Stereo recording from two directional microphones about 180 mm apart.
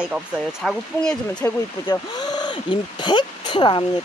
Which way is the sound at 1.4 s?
15° left (ahead or behind).